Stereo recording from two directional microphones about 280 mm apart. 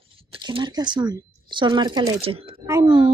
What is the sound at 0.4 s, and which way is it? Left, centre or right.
A woman's voice, centre.